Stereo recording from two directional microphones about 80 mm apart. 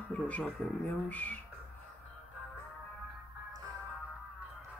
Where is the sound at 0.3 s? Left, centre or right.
Centre.